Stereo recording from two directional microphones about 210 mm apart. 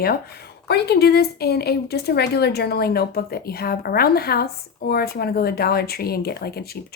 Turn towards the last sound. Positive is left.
turn(degrees=50)  # may be behind; listen again after turning